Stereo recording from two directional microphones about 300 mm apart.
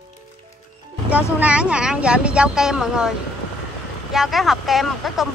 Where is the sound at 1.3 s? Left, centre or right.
Centre.